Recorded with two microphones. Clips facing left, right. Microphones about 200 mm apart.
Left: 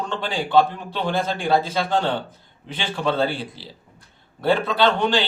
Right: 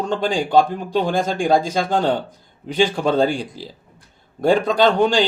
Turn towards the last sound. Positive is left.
turn(degrees=-45)  # may be behind; listen again after turning